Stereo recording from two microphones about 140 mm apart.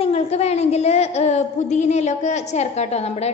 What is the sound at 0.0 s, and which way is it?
A woman's voice, 50° left (ahead or behind).